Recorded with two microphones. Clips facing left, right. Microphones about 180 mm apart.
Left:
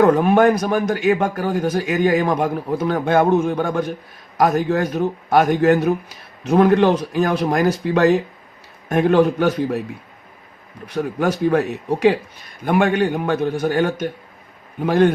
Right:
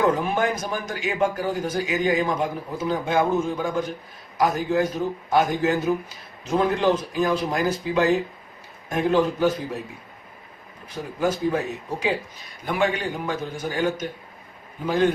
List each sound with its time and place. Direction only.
0.0 s a man's voice: 65° left (ahead or behind)
10.8 s a man's voice: 70° left (ahead or behind)